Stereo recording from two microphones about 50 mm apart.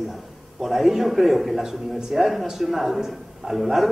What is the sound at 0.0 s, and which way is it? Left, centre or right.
A man's voice, centre.